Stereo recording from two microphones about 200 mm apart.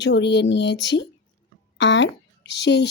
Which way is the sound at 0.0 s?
60° left (ahead or behind).